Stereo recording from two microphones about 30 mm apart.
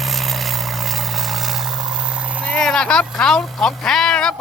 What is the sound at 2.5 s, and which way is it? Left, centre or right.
Speech, left.